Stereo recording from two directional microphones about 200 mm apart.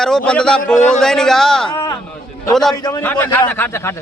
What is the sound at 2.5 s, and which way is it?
A man's voice, centre (ahead or behind).